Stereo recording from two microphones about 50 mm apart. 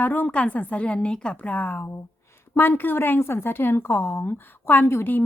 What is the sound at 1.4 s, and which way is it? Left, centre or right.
Speech, left.